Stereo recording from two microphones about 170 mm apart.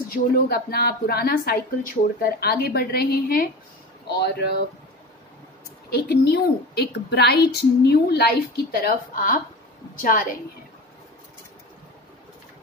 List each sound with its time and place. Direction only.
0.1 s a woman's voice: 65° left (ahead or behind)
4.2 s a woman's voice: 75° left (ahead or behind)
5.9 s a woman's voice: 75° left (ahead or behind)
8.7 s a woman's voice: 55° left (ahead or behind)